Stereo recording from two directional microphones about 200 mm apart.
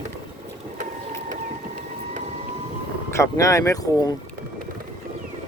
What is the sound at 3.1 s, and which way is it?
Speech, 15° left (ahead or behind).